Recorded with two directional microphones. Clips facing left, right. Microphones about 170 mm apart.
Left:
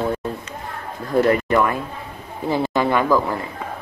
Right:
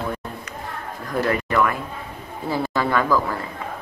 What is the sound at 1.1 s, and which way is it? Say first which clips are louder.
Speech: left 4 dB; 25° left (ahead or behind).